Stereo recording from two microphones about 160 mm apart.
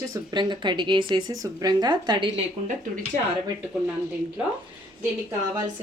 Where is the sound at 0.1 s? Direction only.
30° right (ahead or behind).